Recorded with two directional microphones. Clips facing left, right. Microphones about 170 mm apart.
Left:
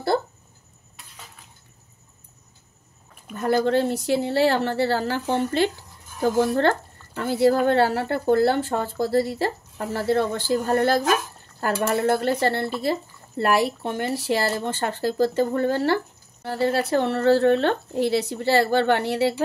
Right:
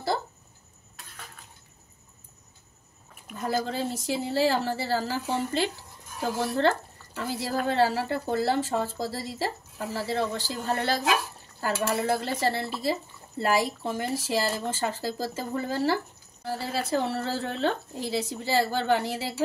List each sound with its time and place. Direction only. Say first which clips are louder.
3.3 s speech: left 8 dB; 70° left (ahead or behind)
7.2 s speech: left 10 dB; 60° left (ahead or behind)